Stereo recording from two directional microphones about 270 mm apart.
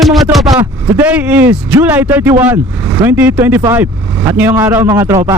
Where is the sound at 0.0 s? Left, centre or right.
Centre.